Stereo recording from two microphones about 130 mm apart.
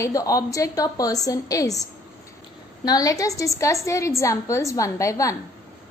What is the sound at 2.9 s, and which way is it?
A woman's voice, 25° left (ahead or behind).